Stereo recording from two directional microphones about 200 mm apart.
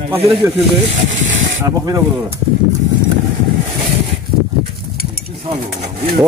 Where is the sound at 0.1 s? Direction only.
25° right (ahead or behind).